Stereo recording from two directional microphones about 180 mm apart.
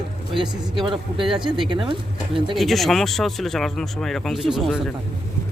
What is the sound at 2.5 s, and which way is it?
Speech, centre (ahead or behind).